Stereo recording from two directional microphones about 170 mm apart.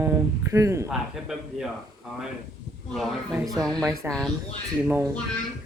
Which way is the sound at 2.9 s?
Centre (ahead or behind).